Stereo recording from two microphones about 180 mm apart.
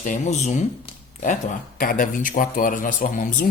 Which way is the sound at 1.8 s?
50° left (ahead or behind).